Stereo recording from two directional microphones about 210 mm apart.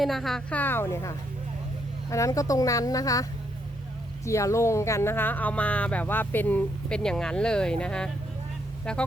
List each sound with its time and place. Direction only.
0.0 s speech: centre (ahead or behind); by 3.2 s 15° left (ahead or behind)
4.3 s speech: 15° left (ahead or behind)